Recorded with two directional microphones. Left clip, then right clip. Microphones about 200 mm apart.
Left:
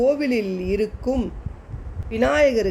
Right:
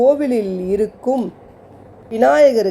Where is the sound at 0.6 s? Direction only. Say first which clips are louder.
Right 5 dB; 45° right (ahead or behind).